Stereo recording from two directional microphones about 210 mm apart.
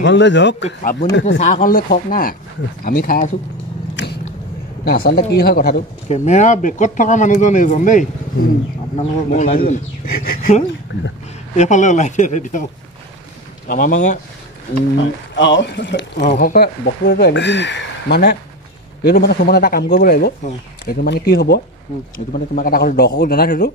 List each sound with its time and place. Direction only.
0.0 s speech: 60° left (ahead or behind)
1.4 s speech: 40° left (ahead or behind)
3.9 s a sound: 50° left (ahead or behind)
4.8 s speech: 45° left (ahead or behind)
6.0 s speech: 35° left (ahead or behind)
11.5 s speech: 35° left (ahead or behind)
13.7 s speech: 40° left (ahead or behind)
15.0 s speech: 60° left (ahead or behind)
16.3 s speech: 45° left (ahead or behind)